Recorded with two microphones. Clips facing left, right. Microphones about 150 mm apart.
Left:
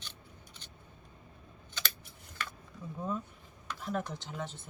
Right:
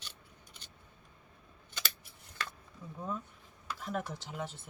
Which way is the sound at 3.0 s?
Centre (ahead or behind).